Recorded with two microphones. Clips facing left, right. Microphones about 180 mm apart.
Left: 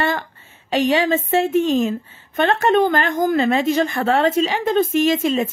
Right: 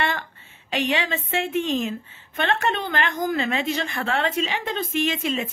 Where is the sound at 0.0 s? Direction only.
40° left (ahead or behind).